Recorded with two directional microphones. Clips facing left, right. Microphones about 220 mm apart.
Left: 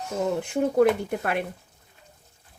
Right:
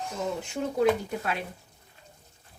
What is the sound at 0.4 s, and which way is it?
Speech, 55° left (ahead or behind).